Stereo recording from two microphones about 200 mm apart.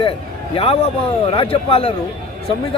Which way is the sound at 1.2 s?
25° left (ahead or behind).